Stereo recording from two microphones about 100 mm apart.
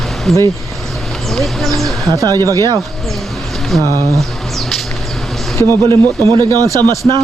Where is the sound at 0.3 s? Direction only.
5° left (ahead or behind).